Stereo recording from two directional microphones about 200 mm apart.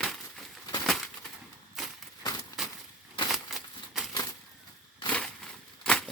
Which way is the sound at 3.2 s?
Centre (ahead or behind).